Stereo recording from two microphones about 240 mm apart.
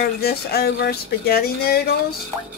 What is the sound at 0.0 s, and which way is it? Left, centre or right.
Speech, left.